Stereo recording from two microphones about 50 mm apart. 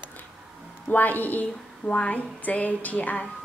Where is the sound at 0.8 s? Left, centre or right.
Left.